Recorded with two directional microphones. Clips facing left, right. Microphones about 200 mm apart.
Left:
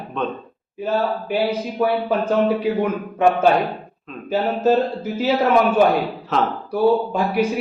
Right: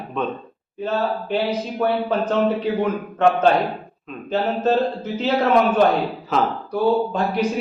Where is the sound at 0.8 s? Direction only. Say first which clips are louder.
Left 1 dB; 10° left (ahead or behind).